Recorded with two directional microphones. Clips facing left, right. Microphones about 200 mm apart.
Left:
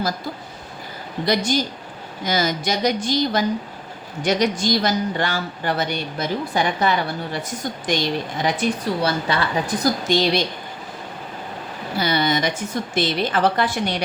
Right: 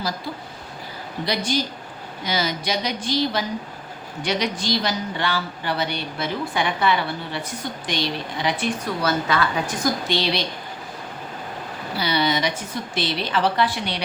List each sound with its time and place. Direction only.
1.2 s a woman's voice: 45° left (ahead or behind)
9.0 s a woman's voice: 30° left (ahead or behind)
9.8 s a woman's voice: 45° left (ahead or behind)
11.9 s a woman's voice: 50° left (ahead or behind)